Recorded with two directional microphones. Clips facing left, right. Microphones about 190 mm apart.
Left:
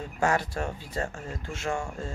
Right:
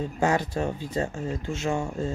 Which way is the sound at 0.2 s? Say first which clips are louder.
Right 2 dB; 20° right (ahead or behind).